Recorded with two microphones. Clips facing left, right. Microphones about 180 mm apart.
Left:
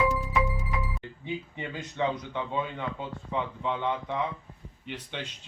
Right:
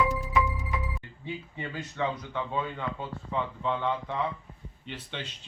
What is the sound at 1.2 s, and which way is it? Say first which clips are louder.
Speech: left 2 dB; 20° left (ahead or behind).